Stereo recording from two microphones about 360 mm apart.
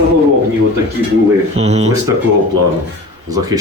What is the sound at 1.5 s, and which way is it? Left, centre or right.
Speech, centre.